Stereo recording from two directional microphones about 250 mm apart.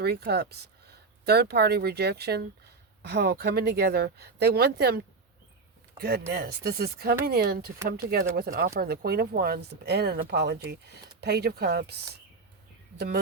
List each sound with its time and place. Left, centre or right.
0.0 s speech: right
6.0 s speech: right